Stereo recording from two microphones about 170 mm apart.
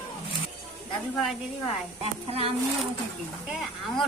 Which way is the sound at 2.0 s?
35° right (ahead or behind).